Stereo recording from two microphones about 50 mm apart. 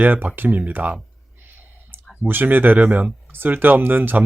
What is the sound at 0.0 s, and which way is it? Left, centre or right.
Speech, right.